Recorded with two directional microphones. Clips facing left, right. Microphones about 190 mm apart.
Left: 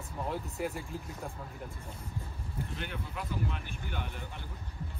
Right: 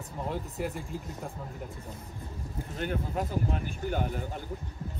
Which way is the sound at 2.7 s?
45° right (ahead or behind).